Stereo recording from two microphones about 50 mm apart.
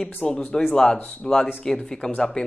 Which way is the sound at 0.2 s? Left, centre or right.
Centre.